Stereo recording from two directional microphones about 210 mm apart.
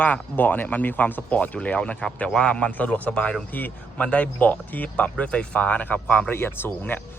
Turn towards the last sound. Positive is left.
turn(degrees=10)  # may be behind; listen again after turning